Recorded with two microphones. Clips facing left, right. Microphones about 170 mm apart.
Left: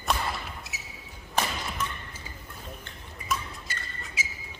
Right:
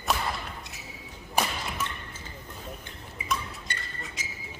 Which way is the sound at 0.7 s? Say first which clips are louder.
Left 1 dB; 5° left (ahead or behind).